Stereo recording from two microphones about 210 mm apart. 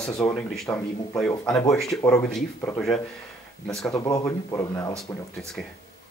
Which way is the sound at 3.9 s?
15° left (ahead or behind).